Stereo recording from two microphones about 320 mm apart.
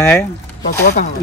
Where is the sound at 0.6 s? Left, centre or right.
Left.